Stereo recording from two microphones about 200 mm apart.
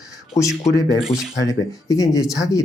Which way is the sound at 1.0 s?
Centre (ahead or behind).